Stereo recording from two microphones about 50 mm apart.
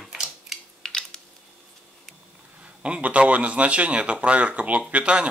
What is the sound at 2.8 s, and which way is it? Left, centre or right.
Speech, right.